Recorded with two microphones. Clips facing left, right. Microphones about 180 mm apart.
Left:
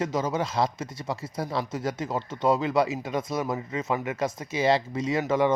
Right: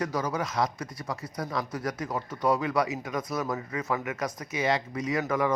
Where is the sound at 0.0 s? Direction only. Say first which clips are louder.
Left 3 dB; 25° left (ahead or behind).